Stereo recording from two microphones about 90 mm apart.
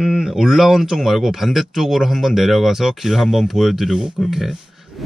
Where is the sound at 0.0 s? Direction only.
5° right (ahead or behind).